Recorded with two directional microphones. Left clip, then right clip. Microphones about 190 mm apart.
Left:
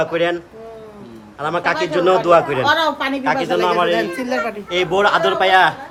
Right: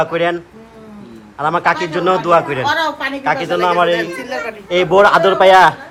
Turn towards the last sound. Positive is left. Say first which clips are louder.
# right 5 dB
turn(degrees=-10)  # may be behind; listen again after turning